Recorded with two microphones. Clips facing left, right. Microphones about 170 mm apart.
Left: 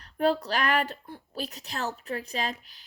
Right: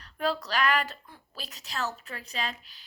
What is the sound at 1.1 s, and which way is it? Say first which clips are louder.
A woman's voice: left 9 dB; 60° left (ahead or behind).